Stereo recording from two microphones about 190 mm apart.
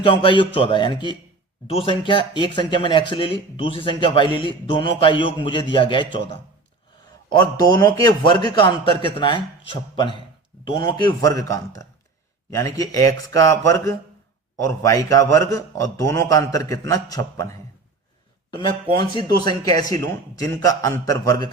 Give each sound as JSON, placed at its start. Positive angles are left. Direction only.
{"t": 0.0, "sound": "speech", "side_deg": 25}
{"t": 7.1, "sound": "a sound", "side_deg": 20}
{"t": 7.7, "sound": "a man's voice", "side_deg": 20}
{"t": 19.5, "sound": "speech", "side_deg": 20}